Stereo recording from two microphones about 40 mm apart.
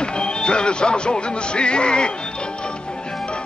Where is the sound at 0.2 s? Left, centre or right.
Left.